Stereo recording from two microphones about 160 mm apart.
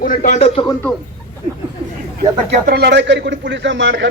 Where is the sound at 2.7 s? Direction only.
85° right.